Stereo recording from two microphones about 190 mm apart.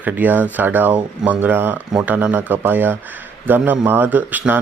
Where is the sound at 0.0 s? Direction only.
10° right (ahead or behind).